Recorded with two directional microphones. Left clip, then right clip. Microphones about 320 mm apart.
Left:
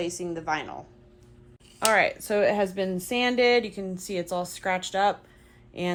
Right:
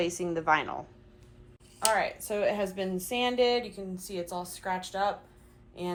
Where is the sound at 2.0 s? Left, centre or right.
Left.